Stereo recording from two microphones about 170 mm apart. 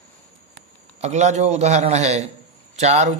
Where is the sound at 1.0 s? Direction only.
40° right (ahead or behind).